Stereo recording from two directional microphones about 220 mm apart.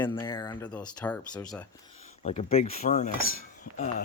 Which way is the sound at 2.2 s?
30° left (ahead or behind).